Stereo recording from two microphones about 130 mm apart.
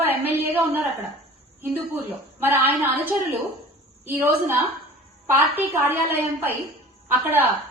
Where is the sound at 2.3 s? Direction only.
15° right (ahead or behind).